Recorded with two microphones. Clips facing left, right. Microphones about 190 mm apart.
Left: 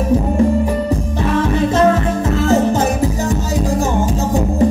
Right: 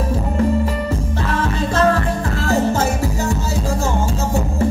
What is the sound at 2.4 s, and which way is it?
Music, 20° left (ahead or behind).